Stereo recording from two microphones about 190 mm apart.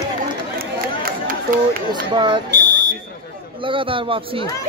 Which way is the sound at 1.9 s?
25° right (ahead or behind).